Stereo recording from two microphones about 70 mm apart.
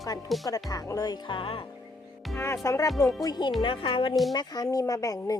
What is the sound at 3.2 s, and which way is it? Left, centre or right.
Speech, left.